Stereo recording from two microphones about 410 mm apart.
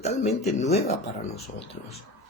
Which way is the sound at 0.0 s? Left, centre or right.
Centre.